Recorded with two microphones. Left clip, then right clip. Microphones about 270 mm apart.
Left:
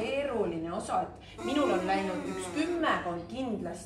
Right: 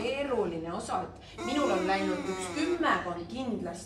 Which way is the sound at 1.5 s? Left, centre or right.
Centre.